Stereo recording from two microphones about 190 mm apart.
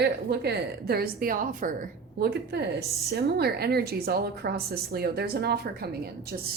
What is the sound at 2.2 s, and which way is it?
Speech, 55° right (ahead or behind).